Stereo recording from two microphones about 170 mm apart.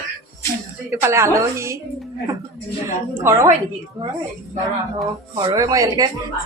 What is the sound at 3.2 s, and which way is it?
Speech, 15° right (ahead or behind).